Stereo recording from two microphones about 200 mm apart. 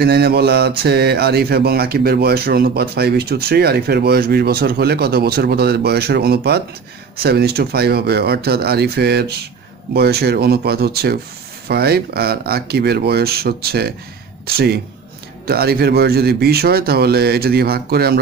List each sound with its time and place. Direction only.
0.0 s speech: 50° right (ahead or behind)